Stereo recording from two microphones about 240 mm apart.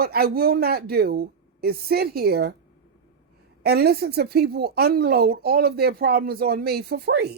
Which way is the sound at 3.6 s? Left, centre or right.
Right.